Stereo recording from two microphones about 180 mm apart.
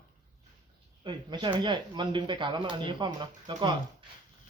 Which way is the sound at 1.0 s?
25° right (ahead or behind).